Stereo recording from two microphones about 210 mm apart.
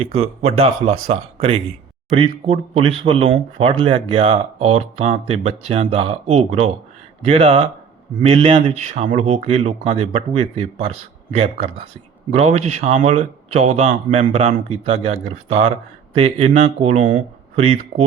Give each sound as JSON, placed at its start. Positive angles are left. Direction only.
{"t": 0.0, "sound": "speech", "side_deg": -30}